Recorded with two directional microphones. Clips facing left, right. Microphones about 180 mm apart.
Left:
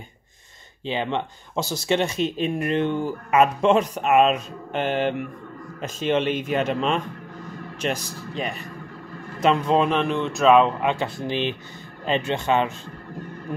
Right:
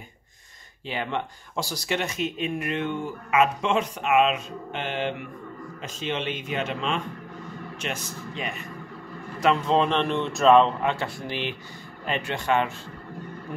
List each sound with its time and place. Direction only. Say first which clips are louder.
0.8 s speech: left 4 dB; 25° left (ahead or behind)
9.4 s speech: left 2 dB; 20° left (ahead or behind)
9.8 s speech: left 2 dB; 5° left (ahead or behind)
10.8 s speech: left 3 dB; 15° left (ahead or behind)